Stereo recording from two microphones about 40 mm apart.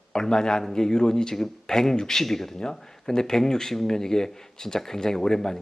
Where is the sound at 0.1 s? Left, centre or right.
Centre.